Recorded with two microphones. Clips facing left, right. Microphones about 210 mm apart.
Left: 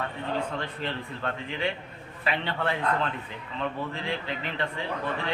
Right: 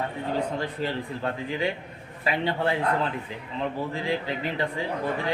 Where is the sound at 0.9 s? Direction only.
15° right (ahead or behind).